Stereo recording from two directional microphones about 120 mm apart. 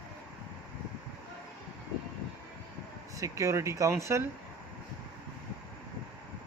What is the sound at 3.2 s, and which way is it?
Speech, 25° right (ahead or behind).